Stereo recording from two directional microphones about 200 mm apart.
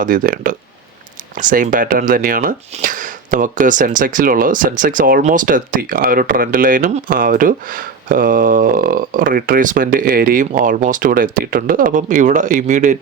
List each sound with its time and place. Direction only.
0.0 s speech: 45° right (ahead or behind)